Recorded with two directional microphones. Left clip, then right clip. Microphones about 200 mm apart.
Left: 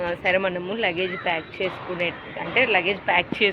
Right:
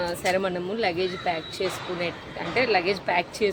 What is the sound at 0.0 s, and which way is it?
A woman's voice, 15° right (ahead or behind).